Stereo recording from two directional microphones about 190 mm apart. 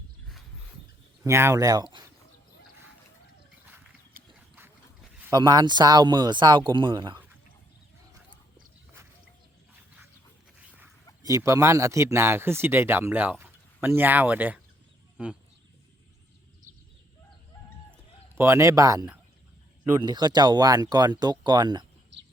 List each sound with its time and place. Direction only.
1.2 s speech: 15° right (ahead or behind)
4.1 s a sound: 50° right (ahead or behind)
5.3 s speech: 20° right (ahead or behind)
11.2 s speech: 15° right (ahead or behind)
18.3 s speech: 15° right (ahead or behind)
22.1 s a sound: 65° right (ahead or behind)